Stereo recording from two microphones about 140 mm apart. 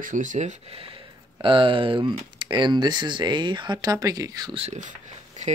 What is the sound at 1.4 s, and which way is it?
Speech, 35° right (ahead or behind).